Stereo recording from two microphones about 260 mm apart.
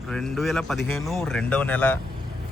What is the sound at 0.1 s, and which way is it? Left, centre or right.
A man's voice, centre.